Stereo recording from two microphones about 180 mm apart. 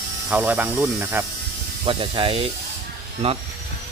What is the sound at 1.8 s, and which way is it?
Speech, 30° right (ahead or behind).